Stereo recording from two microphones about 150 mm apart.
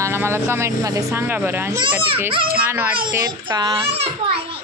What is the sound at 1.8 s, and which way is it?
Speech, 35° right (ahead or behind).